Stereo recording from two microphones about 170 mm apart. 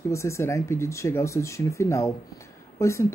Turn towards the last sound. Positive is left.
turn(degrees=15)  # may be behind; listen again after turning